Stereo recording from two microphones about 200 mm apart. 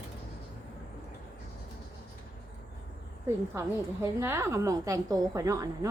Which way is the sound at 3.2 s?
10° right (ahead or behind).